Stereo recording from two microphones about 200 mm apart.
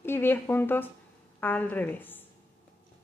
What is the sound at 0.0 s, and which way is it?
A woman's voice, 10° left (ahead or behind).